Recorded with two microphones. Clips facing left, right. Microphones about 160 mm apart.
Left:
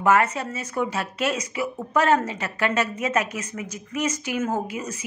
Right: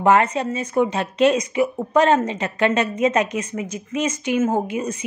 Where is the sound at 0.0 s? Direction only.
30° right (ahead or behind).